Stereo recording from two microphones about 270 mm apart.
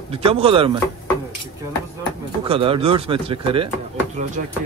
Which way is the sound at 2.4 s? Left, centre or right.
Centre.